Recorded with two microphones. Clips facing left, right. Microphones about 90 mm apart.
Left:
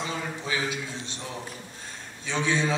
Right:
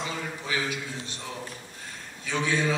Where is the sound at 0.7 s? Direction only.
25° left (ahead or behind).